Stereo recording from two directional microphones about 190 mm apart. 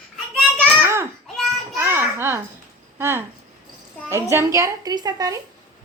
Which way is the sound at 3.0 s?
15° right (ahead or behind).